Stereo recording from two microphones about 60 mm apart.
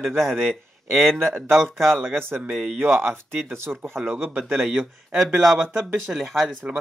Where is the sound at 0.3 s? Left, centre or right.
Right.